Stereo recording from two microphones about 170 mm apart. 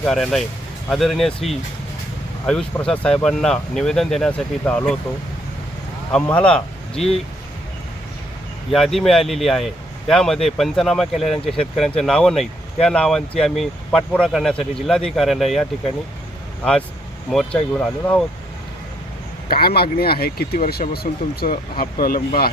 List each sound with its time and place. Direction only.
0.0 s speech: centre (ahead or behind)
6.1 s speech: 5° left (ahead or behind)
8.7 s speech: centre (ahead or behind)
17.7 s speech: 5° left (ahead or behind)
19.5 s speech: 65° left (ahead or behind)